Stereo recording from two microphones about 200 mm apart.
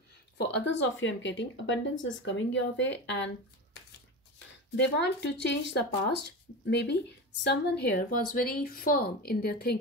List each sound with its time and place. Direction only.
0.4 s speech: 55° left (ahead or behind)
4.8 s speech: 60° left (ahead or behind)